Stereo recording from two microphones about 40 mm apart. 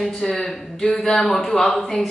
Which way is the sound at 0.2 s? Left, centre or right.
Centre.